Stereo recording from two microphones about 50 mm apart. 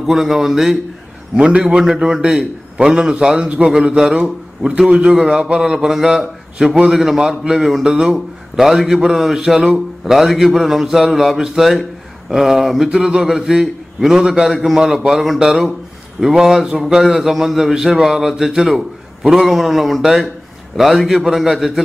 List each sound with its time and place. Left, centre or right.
0.0 s a man's voice: centre
1.3 s a man's voice: centre